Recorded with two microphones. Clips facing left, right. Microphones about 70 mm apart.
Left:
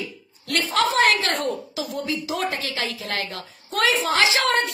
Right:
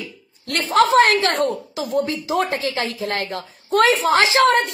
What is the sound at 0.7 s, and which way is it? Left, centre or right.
Speech, right.